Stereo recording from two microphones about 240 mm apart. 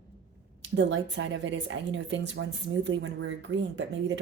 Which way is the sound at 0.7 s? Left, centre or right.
Right.